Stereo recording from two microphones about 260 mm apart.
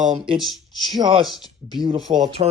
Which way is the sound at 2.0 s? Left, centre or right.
Centre.